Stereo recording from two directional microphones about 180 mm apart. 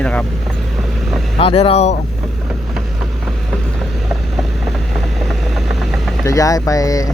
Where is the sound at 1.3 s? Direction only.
30° left (ahead or behind).